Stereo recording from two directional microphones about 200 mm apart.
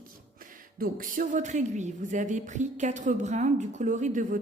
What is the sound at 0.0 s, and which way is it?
A woman's voice, 45° right (ahead or behind).